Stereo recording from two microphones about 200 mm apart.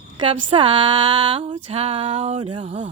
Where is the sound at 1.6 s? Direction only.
30° right (ahead or behind).